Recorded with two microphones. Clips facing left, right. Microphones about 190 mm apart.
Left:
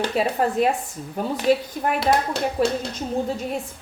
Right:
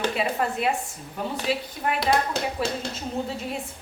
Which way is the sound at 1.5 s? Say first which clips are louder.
Left 9 dB; 45° left (ahead or behind).